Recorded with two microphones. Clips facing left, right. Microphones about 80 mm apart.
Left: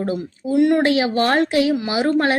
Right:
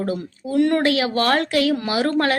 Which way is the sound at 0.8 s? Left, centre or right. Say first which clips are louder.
Left 2 dB; left.